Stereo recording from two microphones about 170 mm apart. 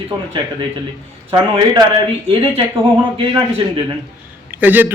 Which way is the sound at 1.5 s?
25° right (ahead or behind).